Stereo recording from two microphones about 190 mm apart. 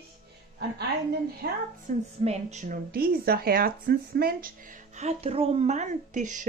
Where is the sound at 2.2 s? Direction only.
35° right (ahead or behind); by 4.5 s 55° right (ahead or behind).